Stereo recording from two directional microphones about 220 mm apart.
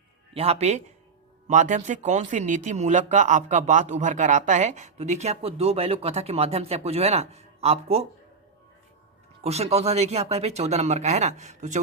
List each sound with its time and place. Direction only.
0.3 s speech: 25° right (ahead or behind)
9.4 s speech: 30° right (ahead or behind)